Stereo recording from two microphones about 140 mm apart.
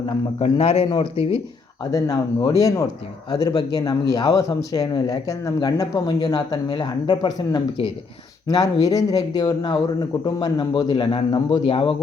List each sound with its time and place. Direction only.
0.0 s a man's voice: 40° left (ahead or behind)
1.8 s a man's voice: 25° left (ahead or behind); by 11.9 s 40° left (ahead or behind)